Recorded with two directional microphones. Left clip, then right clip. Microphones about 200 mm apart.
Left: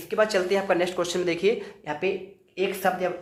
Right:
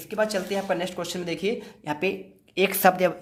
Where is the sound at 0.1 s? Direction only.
30° right (ahead or behind).